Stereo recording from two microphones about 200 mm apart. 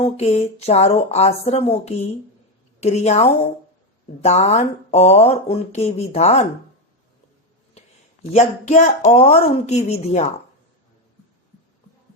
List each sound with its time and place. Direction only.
0.0 s speech: 30° left (ahead or behind)
8.3 s speech: 35° left (ahead or behind)